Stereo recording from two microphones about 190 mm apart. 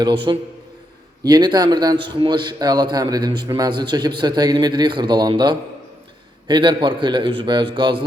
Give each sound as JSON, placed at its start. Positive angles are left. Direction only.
{"t": 0.3, "sound": "a man's voice", "side_deg": -25}